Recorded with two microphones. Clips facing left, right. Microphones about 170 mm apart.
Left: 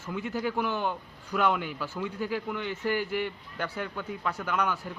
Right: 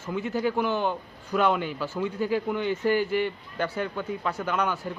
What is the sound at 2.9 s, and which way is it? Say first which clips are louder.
Speech: right 4 dB; 25° right (ahead or behind).